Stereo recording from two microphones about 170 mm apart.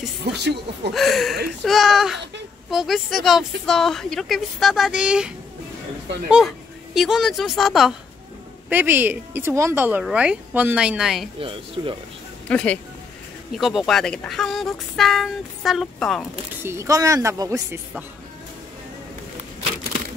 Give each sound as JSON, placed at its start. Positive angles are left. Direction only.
{"t": 0.2, "sound": "speech", "side_deg": -80}
{"t": 0.9, "sound": "speech", "side_deg": 0}
{"t": 6.3, "sound": "a woman's voice", "side_deg": 0}
{"t": 8.6, "sound": "a woman's voice", "side_deg": -10}
{"t": 11.3, "sound": "speech", "side_deg": -30}
{"t": 12.4, "sound": "speech", "side_deg": 10}
{"t": 16.6, "sound": "a woman's voice", "side_deg": -15}